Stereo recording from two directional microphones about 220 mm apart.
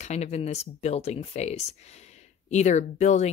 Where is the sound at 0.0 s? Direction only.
30° left (ahead or behind).